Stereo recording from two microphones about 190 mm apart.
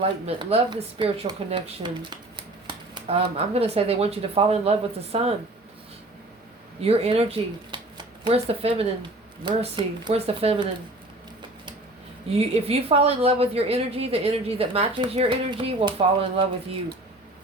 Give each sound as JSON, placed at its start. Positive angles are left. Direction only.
{"t": 0.0, "sound": "speech", "side_deg": -30}
{"t": 6.8, "sound": "speech", "side_deg": -30}
{"t": 12.4, "sound": "speech", "side_deg": -30}